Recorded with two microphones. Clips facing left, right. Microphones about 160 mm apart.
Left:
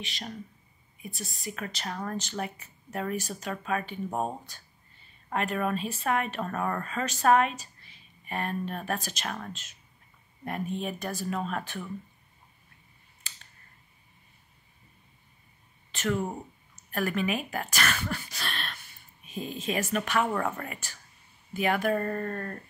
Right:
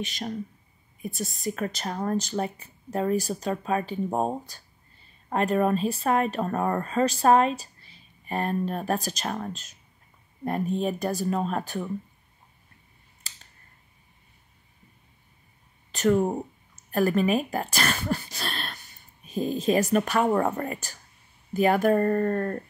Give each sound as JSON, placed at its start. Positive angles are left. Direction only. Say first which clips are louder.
{"t": 0.0, "sound": "speech", "louder": "right 7 dB", "side_deg": -45}
{"t": 15.9, "sound": "speech", "louder": "right 8 dB", "side_deg": -40}